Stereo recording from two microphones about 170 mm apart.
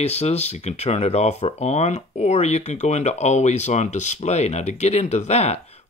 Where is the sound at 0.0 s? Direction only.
40° left (ahead or behind).